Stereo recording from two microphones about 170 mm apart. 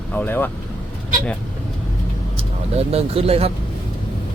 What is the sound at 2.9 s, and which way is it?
Speech, 35° right (ahead or behind).